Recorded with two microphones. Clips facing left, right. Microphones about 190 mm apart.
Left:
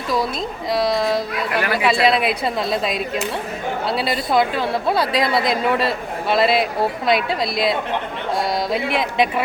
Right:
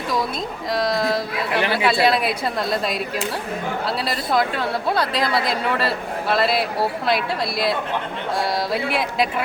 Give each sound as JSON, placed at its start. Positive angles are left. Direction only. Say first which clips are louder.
{"t": 0.7, "sound": "a woman's voice", "louder": "left 2 dB", "side_deg": 0}
{"t": 1.5, "sound": "speech", "louder": "even", "side_deg": -25}
{"t": 1.8, "sound": "a woman's voice", "louder": "left 2 dB", "side_deg": 0}